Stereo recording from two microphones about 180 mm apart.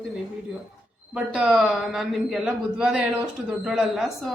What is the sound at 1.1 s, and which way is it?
Speech, 5° right (ahead or behind).